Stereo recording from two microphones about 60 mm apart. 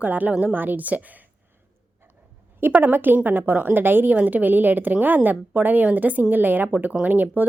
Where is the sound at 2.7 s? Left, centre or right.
Right.